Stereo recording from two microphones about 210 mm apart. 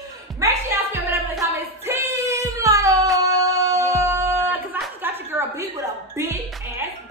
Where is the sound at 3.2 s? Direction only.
15° right (ahead or behind).